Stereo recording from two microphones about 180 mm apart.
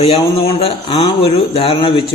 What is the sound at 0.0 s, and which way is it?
Speech, 35° left (ahead or behind).